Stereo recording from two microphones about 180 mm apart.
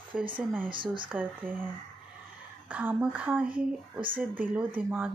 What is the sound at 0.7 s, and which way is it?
Speech, 25° right (ahead or behind).